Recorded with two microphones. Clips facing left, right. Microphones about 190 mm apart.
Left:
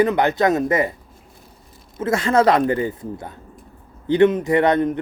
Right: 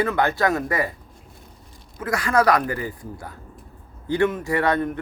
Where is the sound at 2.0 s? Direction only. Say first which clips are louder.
Left 4 dB; 25° left (ahead or behind).